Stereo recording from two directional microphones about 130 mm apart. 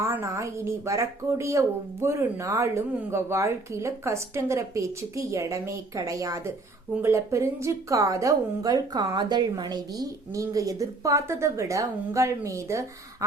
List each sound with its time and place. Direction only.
0.0 s speech: 20° right (ahead or behind)